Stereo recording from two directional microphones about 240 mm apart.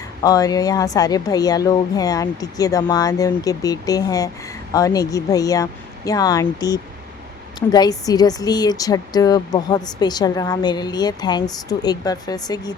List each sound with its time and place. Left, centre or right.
0.2 s speech: centre